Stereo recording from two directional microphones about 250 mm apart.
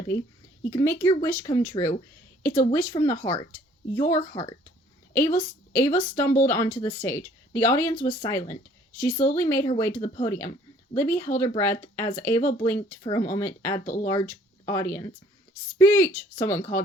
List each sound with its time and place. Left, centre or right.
0.6 s a woman's voice: centre
3.2 s speech: left
3.9 s speech: centre
13.8 s speech: left
14.1 s speech: centre